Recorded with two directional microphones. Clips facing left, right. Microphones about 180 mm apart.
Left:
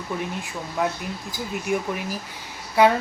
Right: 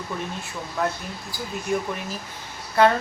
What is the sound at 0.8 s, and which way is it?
Speech, 15° left (ahead or behind).